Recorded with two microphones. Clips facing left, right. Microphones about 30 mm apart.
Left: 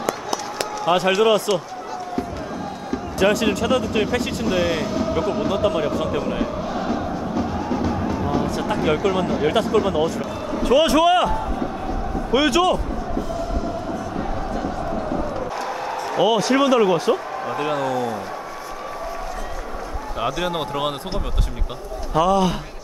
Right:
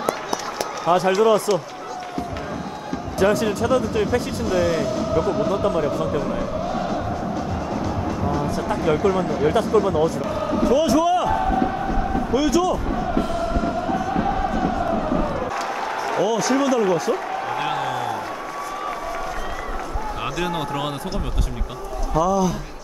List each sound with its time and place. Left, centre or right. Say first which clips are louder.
3.4 s a man's voice: even; left
4.5 s speech: right 1 dB; centre
5.8 s a sound: even; left
6.7 s music: even; centre
8.5 s music: even; left
10.6 s a man's voice: left 3 dB; left
11.2 s a man's voice: right 4 dB; right
12.3 s a man's voice: left 3 dB; left
16.2 s speech: left 3 dB; left
17.5 s a man's voice: left 3 dB; centre
20.2 s speech: left 3 dB; centre; by 21.2 s left
22.1 s a man's voice: left 2 dB; left